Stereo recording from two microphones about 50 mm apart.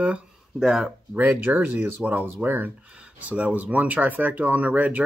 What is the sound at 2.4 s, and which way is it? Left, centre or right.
Speech, right.